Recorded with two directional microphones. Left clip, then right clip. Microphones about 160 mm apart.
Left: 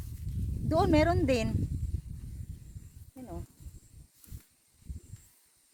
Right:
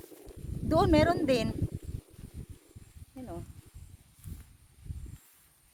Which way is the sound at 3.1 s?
15° right (ahead or behind).